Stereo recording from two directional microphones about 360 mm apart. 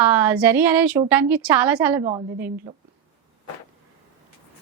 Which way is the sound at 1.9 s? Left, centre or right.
Centre.